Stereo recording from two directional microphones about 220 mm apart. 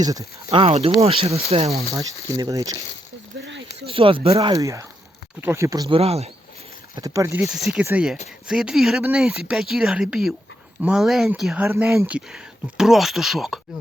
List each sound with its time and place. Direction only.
0.0 s speech: 15° right (ahead or behind)
1.7 s speech: 15° right (ahead or behind)
3.8 s speech: 25° right (ahead or behind)
4.5 s speech: 15° right (ahead or behind)
6.9 s speech: 15° right (ahead or behind)
7.4 s speech: centre (ahead or behind)